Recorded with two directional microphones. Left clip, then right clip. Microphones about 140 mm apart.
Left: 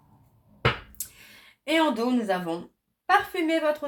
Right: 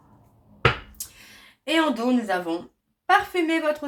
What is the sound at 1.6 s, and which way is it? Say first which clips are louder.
Speech: right 1 dB; 40° left (ahead or behind).